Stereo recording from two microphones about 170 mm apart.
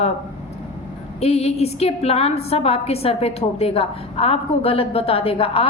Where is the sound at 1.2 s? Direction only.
40° left (ahead or behind).